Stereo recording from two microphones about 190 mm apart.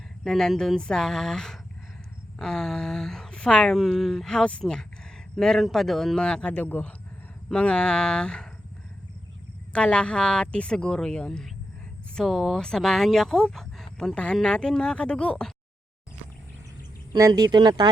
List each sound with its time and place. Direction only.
0.3 s speech: centre (ahead or behind)
9.7 s speech: 5° left (ahead or behind)
17.1 s speech: 15° right (ahead or behind)